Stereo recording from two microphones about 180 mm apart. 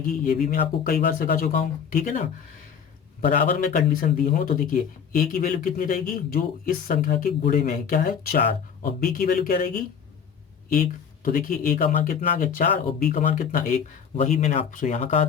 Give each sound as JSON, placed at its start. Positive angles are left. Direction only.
{"t": 0.0, "sound": "speech", "side_deg": 50}